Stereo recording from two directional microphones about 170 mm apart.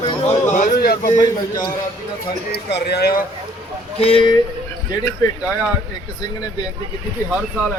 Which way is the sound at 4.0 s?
35° left (ahead or behind).